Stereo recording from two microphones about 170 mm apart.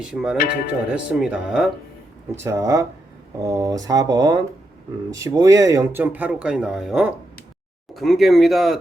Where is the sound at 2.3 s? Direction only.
15° right (ahead or behind).